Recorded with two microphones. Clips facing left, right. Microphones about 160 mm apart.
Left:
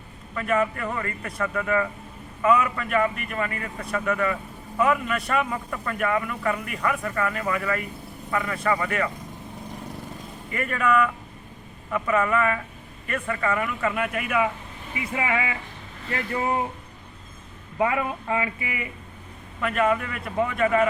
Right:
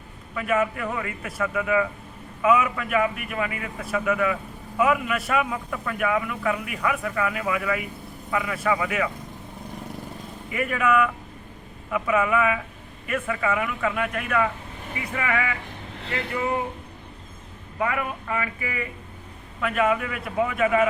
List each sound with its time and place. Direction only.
0.3 s a man's voice: 5° right (ahead or behind)
10.5 s a man's voice: 5° right (ahead or behind)
15.1 s speech: 25° left (ahead or behind)
17.7 s speech: 25° left (ahead or behind)
19.6 s a man's voice: centre (ahead or behind)